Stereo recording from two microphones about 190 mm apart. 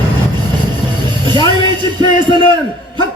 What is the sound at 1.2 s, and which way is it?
Music, 25° right (ahead or behind).